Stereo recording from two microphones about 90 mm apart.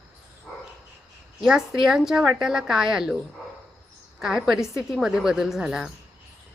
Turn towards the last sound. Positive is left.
turn(degrees=-5)  # may be behind; listen again after turning